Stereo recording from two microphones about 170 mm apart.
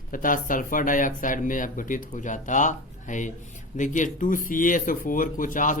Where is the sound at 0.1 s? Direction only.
55° left (ahead or behind).